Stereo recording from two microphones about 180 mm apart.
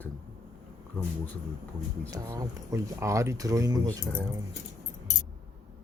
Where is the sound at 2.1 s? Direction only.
20° right (ahead or behind).